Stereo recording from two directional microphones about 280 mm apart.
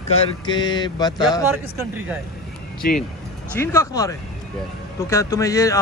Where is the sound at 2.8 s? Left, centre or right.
Left.